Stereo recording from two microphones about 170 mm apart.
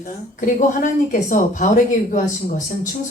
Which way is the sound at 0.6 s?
50° left (ahead or behind).